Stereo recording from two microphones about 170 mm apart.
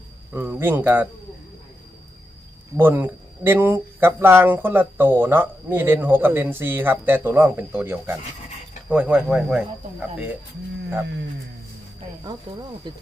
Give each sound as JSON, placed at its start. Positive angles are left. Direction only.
{"t": 0.3, "sound": "speech", "side_deg": -10}
{"t": 2.7, "sound": "speech", "side_deg": -15}
{"t": 12.5, "sound": "speech", "side_deg": -30}